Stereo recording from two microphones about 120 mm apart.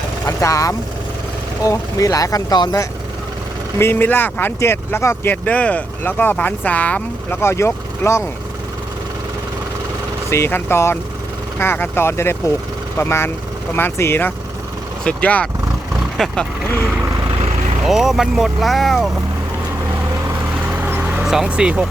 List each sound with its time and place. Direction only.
0.3 s speech: 30° left (ahead or behind)
3.8 s speech: 20° left (ahead or behind)
10.2 s speech: 20° left (ahead or behind); by 16.5 s 5° left (ahead or behind)
17.8 s speech: 5° right (ahead or behind)
20.7 s vehicle: 15° right (ahead or behind)